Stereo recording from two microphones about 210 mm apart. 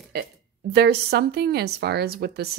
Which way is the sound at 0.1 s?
50° right (ahead or behind).